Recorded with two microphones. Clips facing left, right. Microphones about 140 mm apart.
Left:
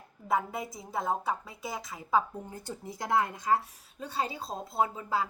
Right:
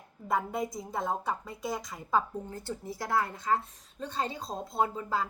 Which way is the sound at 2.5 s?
20° left (ahead or behind).